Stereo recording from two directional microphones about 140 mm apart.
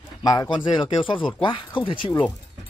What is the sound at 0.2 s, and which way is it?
Speech, 30° left (ahead or behind).